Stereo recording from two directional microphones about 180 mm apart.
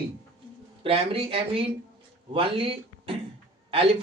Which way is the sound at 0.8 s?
30° right (ahead or behind).